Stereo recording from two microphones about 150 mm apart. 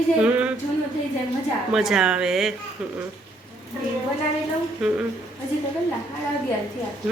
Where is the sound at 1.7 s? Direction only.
Centre (ahead or behind).